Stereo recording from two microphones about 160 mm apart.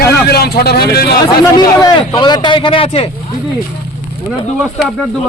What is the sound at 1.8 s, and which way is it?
A man's voice, 25° left (ahead or behind).